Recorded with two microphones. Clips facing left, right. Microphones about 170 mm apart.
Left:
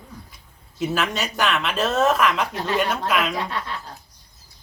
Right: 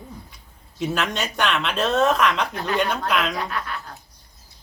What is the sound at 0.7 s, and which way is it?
Speech, centre (ahead or behind).